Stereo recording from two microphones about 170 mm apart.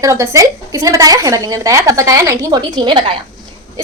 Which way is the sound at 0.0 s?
20° right (ahead or behind).